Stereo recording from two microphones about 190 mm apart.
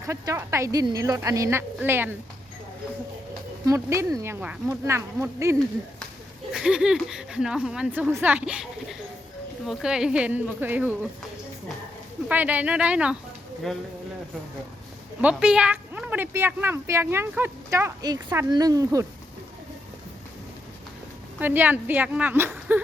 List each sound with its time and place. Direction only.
0.0 s a woman's voice: 15° right (ahead or behind)
3.7 s a woman's voice: 15° right (ahead or behind)
6.5 s a woman's voice: 5° right (ahead or behind)
12.3 s a woman's voice: 10° right (ahead or behind)
15.2 s a woman's voice: 5° right (ahead or behind)
21.3 s a woman's voice: 10° right (ahead or behind)